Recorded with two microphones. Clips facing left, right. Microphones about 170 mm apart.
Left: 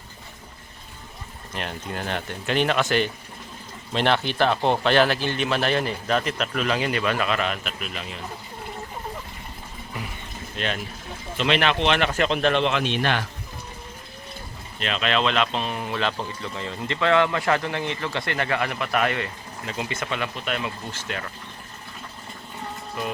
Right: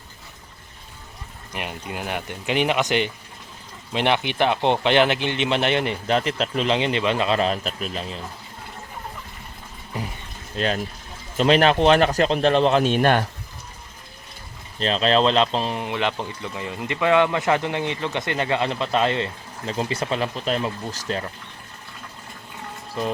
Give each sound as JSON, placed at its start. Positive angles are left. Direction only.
{"t": 1.5, "sound": "speech", "side_deg": -10}
{"t": 10.5, "sound": "speech", "side_deg": -35}
{"t": 14.8, "sound": "speech", "side_deg": -35}